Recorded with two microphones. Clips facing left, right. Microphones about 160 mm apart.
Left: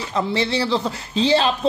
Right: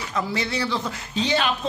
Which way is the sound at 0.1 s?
30° left (ahead or behind).